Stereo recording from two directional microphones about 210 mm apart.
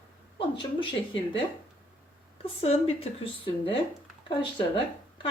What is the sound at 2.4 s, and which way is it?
A woman's voice, 30° left (ahead or behind).